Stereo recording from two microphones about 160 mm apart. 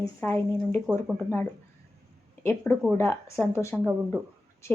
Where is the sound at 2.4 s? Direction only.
15° left (ahead or behind).